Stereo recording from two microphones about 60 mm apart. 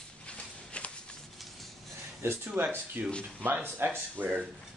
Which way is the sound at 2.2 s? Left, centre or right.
Right.